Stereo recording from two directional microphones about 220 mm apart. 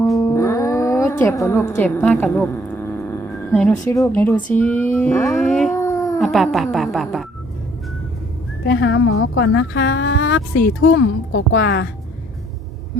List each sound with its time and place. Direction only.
0.2 s music: 15° left (ahead or behind)
1.2 s a woman's voice: 10° left (ahead or behind)
3.8 s female singing: 15° left (ahead or behind)
5.7 s dog: 15° left (ahead or behind)
6.1 s a woman's voice: centre (ahead or behind)
8.6 s a woman's voice: 55° left (ahead or behind)